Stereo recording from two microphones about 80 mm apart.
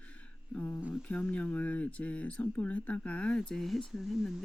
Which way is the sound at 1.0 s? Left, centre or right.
Centre.